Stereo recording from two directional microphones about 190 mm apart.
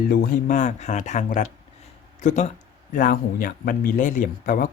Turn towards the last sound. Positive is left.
turn(degrees=45)  # may be behind; listen again after turning